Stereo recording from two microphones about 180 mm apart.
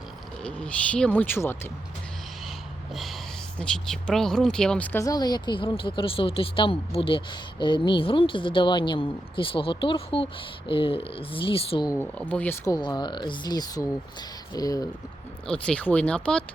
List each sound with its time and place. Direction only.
0.4 s speech: 5° left (ahead or behind)
2.9 s speech: centre (ahead or behind); by 11.9 s 30° left (ahead or behind)
11.9 s speech: 10° left (ahead or behind)
12.6 s speech: 20° left (ahead or behind)
15.4 s speech: 5° left (ahead or behind)